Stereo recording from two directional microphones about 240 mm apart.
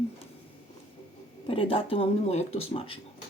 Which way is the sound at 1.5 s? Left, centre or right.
Left.